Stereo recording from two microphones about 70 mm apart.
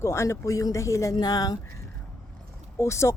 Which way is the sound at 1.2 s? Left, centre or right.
Left.